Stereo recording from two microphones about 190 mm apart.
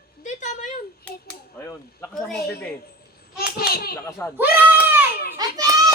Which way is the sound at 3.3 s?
55° left (ahead or behind).